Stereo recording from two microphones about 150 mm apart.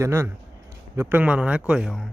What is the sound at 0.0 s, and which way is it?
Speech, 15° right (ahead or behind).